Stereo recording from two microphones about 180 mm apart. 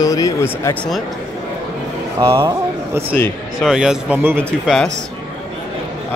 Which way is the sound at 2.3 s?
15° right (ahead or behind).